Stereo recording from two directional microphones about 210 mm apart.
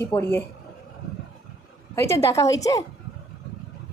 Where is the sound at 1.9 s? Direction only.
15° left (ahead or behind).